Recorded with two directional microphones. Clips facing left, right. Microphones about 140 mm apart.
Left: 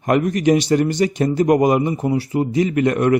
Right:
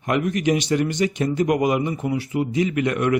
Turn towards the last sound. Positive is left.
turn(degrees=40)  # may be behind; listen again after turning